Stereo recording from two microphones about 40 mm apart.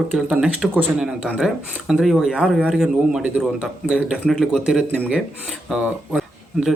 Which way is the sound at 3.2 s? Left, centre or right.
Right.